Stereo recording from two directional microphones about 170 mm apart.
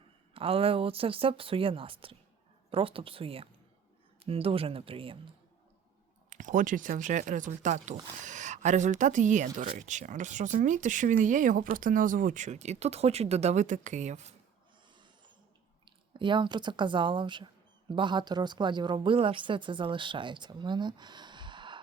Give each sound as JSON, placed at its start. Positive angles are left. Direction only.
{"t": 0.3, "sound": "speech", "side_deg": -35}
{"t": 6.3, "sound": "speech", "side_deg": -50}
{"t": 14.8, "sound": "a sound", "side_deg": -25}
{"t": 16.1, "sound": "speech", "side_deg": -30}